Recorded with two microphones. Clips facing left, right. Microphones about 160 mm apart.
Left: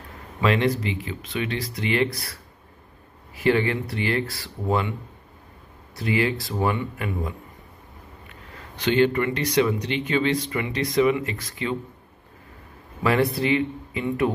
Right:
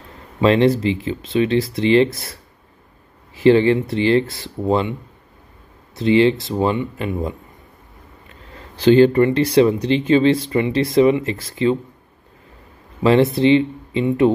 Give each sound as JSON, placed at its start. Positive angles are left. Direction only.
{"t": 0.4, "sound": "speech", "side_deg": -30}
{"t": 3.3, "sound": "speech", "side_deg": -25}
{"t": 5.9, "sound": "speech", "side_deg": -25}
{"t": 8.5, "sound": "speech", "side_deg": -30}
{"t": 13.0, "sound": "speech", "side_deg": -25}